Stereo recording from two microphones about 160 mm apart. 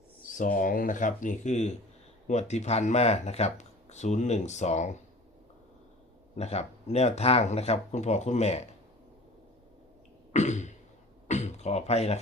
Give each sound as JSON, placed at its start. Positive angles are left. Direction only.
{"t": 0.3, "sound": "speech", "side_deg": 55}
{"t": 6.3, "sound": "speech", "side_deg": 45}
{"t": 10.3, "sound": "throat clearing", "side_deg": 45}
{"t": 11.3, "sound": "beatboxing", "side_deg": 45}